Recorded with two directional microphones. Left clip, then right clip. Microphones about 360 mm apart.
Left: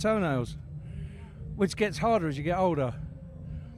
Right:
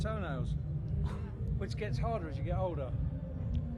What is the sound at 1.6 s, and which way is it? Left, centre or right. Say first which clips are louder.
Speech: left 13 dB; left.